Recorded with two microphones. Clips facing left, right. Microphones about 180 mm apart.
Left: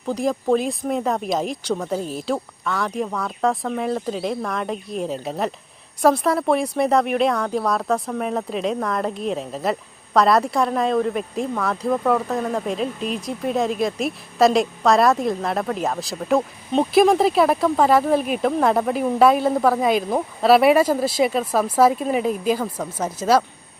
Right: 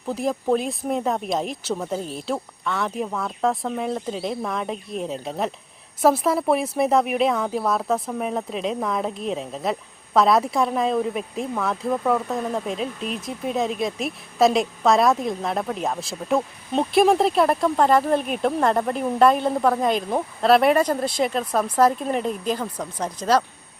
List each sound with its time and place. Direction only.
0.0 s speech: centre (ahead or behind)